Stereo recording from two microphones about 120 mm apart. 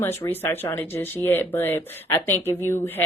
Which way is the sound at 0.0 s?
20° left (ahead or behind).